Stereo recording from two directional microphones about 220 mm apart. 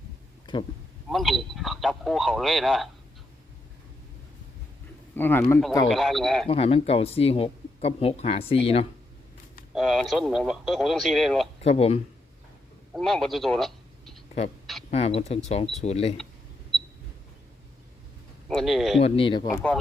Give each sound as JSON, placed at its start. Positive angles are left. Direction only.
{"t": 1.1, "sound": "speech", "side_deg": 0}
{"t": 5.1, "sound": "speech", "side_deg": 10}
{"t": 5.9, "sound": "speech", "side_deg": 0}
{"t": 6.5, "sound": "speech", "side_deg": 25}
{"t": 9.7, "sound": "speech", "side_deg": 0}
{"t": 11.6, "sound": "speech", "side_deg": 30}
{"t": 12.9, "sound": "a man's voice", "side_deg": 0}
{"t": 14.8, "sound": "speech", "side_deg": 30}
{"t": 18.4, "sound": "speech", "side_deg": 0}
{"t": 18.9, "sound": "speech", "side_deg": 25}